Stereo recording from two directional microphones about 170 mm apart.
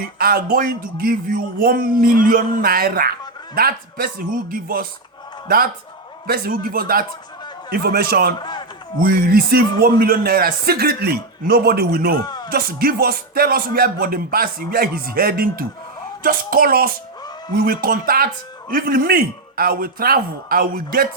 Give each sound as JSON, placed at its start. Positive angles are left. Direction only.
{"t": 0.0, "sound": "a man's voice", "side_deg": -60}
{"t": 6.2, "sound": "a man's voice", "side_deg": -60}
{"t": 8.4, "sound": "speech", "side_deg": 25}
{"t": 9.0, "sound": "a man's voice", "side_deg": -60}